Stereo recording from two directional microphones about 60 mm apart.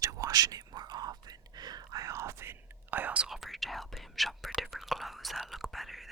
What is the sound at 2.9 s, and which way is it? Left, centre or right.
Whispering, right.